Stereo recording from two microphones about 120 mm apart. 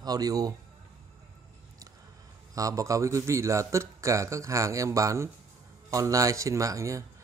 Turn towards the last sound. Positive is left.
turn(degrees=-25)  # may be behind; listen again after turning